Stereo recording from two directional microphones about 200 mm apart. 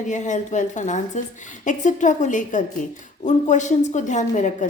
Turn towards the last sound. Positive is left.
turn(degrees=40)  # may be behind; listen again after turning